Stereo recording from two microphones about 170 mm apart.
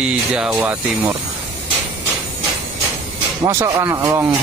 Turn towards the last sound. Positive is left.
turn(degrees=-20)  # may be behind; listen again after turning